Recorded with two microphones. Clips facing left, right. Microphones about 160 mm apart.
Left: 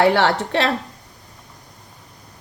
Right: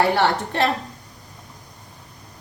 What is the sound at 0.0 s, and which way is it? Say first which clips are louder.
Speech: left 3 dB; 85° left.